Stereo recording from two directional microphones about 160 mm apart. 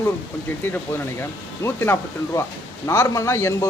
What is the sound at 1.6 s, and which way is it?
A man's voice, 15° left (ahead or behind).